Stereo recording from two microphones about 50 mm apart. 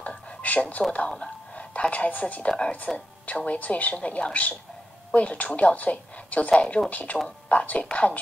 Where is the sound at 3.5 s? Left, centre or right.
Left.